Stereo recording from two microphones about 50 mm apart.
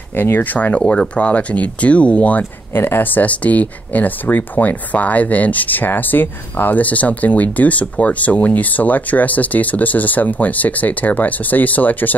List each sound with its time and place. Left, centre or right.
0.1 s speech: left
0.7 s speech: centre
2.7 s speech: left